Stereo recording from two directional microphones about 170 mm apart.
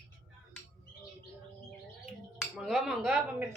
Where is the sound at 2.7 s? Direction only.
Centre (ahead or behind).